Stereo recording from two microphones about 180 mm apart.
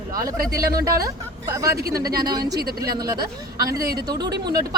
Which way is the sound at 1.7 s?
60° right (ahead or behind).